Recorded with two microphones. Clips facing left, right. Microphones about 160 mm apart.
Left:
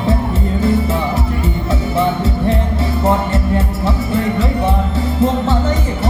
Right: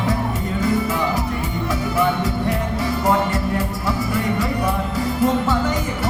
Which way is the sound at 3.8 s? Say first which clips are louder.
Left 4 dB; 25° left (ahead or behind).